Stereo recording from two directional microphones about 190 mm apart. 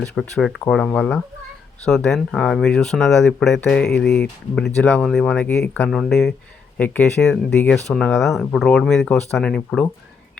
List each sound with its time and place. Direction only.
0.0 s speech: 5° left (ahead or behind)